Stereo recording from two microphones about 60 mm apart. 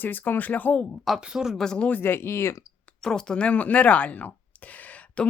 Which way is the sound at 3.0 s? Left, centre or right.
Centre.